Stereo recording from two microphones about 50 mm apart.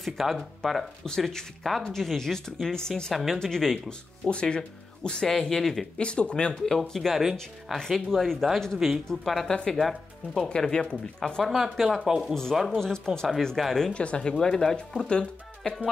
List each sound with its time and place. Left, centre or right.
0.0 s speech: centre
0.6 s speech: centre
4.3 s speech: centre
5.9 s speech: left; by 10.5 s centre
10.5 s speech: centre
11.4 s speech: centre
12.9 s speech: centre
13.6 s speech: centre
13.9 s speech: left